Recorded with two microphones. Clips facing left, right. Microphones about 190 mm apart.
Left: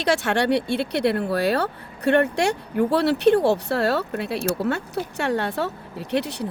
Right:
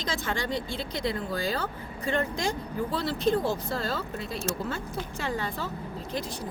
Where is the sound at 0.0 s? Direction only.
70° left (ahead or behind).